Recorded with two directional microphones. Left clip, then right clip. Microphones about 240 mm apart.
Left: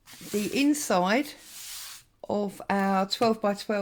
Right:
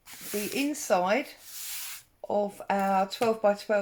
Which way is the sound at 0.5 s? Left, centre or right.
Left.